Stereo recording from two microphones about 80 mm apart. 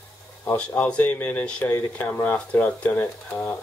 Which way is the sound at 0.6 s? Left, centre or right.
Centre.